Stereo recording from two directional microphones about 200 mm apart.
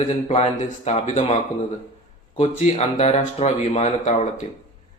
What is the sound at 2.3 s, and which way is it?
A man's voice, 35° left (ahead or behind).